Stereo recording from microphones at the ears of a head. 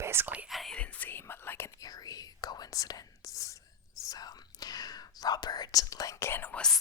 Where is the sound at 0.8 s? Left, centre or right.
Left.